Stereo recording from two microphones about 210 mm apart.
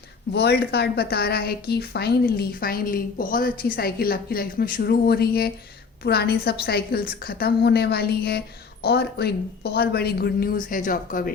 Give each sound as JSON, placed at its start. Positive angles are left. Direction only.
{"t": 0.3, "sound": "a woman's voice", "side_deg": 50}